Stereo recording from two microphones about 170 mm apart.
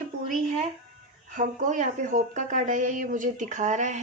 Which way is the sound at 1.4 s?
50° right (ahead or behind).